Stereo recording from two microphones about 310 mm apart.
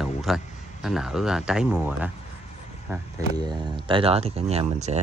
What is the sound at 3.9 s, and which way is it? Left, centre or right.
Speech, centre.